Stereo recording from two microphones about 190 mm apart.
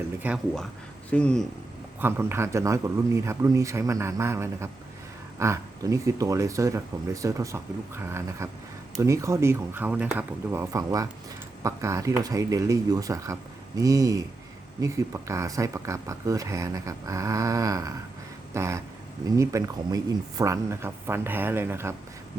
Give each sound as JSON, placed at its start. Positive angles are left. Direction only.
{"t": 0.2, "sound": "speech", "side_deg": 0}
{"t": 2.0, "sound": "speech", "side_deg": -10}